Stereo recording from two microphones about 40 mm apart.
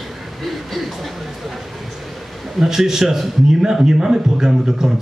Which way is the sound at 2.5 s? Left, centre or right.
Centre.